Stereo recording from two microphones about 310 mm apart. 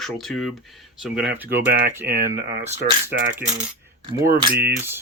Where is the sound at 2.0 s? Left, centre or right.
Right.